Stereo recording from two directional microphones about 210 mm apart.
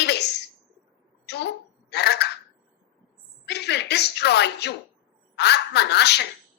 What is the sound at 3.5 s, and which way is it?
A woman's voice, 55° left (ahead or behind).